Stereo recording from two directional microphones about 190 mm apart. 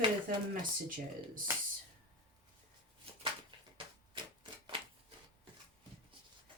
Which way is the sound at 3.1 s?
30° right (ahead or behind).